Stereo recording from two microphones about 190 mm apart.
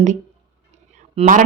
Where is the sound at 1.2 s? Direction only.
40° right (ahead or behind).